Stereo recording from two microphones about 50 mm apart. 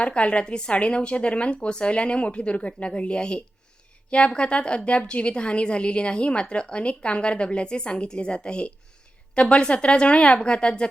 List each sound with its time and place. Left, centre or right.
0.0 s a woman's voice: left